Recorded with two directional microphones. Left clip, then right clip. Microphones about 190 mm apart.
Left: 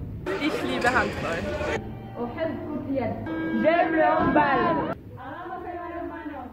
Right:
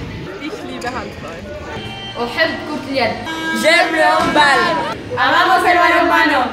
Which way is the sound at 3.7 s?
20° right (ahead or behind).